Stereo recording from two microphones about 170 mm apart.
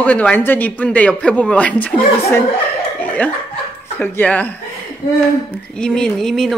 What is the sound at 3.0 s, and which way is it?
Chuckle, 10° left (ahead or behind).